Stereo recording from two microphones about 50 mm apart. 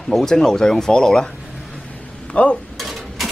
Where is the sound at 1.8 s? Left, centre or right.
Left.